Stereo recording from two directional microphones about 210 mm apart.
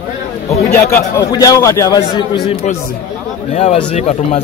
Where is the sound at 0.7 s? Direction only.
15° left (ahead or behind).